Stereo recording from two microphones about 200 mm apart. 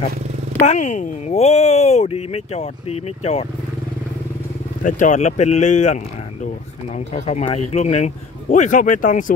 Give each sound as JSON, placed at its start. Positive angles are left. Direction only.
{"t": 0.7, "sound": "speech", "side_deg": 35}
{"t": 4.8, "sound": "speech", "side_deg": 40}
{"t": 7.2, "sound": "speech", "side_deg": 35}